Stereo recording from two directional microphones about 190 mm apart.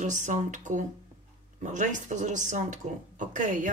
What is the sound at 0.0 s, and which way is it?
Speech, 40° right (ahead or behind).